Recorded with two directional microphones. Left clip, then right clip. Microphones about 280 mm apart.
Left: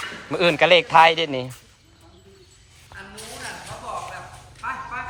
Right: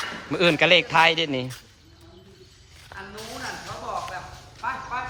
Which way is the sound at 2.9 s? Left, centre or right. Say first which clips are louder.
Right 1 dB; right.